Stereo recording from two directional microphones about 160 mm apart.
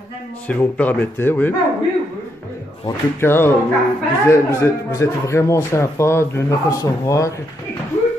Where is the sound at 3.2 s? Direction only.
15° left (ahead or behind).